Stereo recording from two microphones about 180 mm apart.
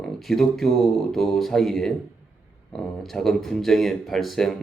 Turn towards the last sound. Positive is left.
turn(degrees=0)  # may be behind; listen again after turning